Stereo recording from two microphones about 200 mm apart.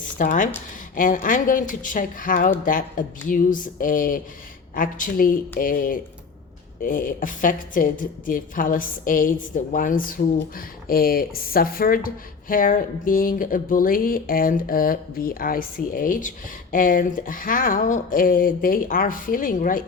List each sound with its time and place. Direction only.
0.0 s speech: 40° left (ahead or behind)